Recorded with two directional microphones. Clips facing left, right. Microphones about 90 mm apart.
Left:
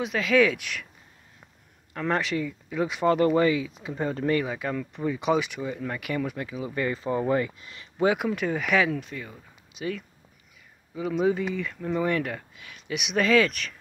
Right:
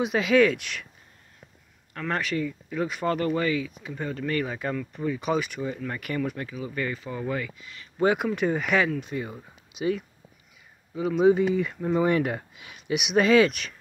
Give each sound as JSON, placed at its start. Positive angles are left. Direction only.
{"t": 0.0, "sound": "speech", "side_deg": -10}
{"t": 0.4, "sound": "speech", "side_deg": 5}
{"t": 2.0, "sound": "speech", "side_deg": 15}
{"t": 4.4, "sound": "speech", "side_deg": 5}
{"t": 6.5, "sound": "speech", "side_deg": 20}
{"t": 8.0, "sound": "speech", "side_deg": 0}
{"t": 9.1, "sound": "speech", "side_deg": -20}
{"t": 11.0, "sound": "speech", "side_deg": 0}
{"t": 11.6, "sound": "speech", "side_deg": -15}